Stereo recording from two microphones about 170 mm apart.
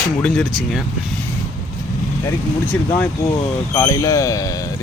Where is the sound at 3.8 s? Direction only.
20° left (ahead or behind).